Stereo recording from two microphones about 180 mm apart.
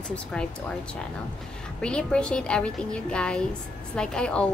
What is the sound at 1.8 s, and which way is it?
A woman's voice, 5° left (ahead or behind).